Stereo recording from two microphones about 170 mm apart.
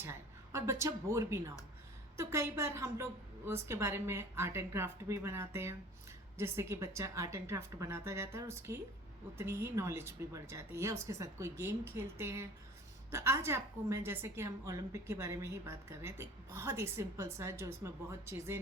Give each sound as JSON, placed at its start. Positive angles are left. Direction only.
{"t": 0.0, "sound": "a woman's voice", "side_deg": -15}